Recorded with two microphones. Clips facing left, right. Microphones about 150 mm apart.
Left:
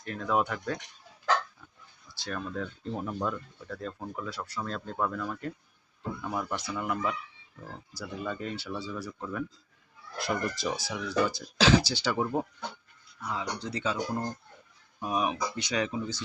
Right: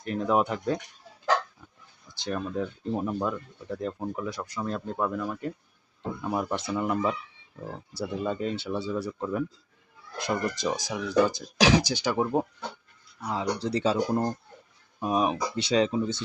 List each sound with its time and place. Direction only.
0.0 s speech: 20° right (ahead or behind)
2.1 s speech: 15° right (ahead or behind)
13.2 s speech: 35° right (ahead or behind)
15.0 s speech: 30° right (ahead or behind)